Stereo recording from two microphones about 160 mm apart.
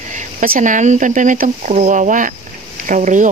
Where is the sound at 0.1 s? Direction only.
50° right (ahead or behind).